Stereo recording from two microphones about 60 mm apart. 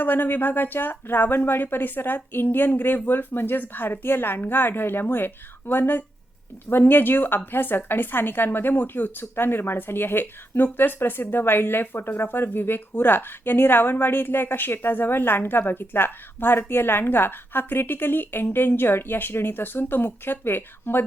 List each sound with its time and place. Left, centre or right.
0.0 s a woman's voice: left